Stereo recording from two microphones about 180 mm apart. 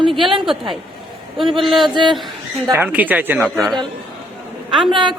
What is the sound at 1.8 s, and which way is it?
Speech, 25° right (ahead or behind).